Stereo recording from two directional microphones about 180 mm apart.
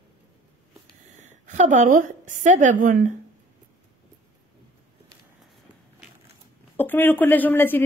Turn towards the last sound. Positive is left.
turn(degrees=10)  # may be behind; listen again after turning